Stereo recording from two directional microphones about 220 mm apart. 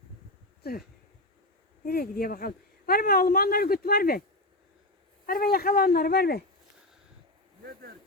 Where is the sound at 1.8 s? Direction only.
45° left (ahead or behind).